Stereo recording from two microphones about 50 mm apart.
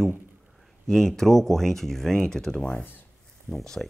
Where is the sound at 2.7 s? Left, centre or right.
Left.